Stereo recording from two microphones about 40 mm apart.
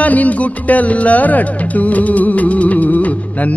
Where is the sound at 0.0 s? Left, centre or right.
Left.